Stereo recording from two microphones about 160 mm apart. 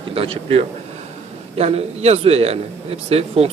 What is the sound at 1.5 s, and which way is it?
Speech, 40° right (ahead or behind).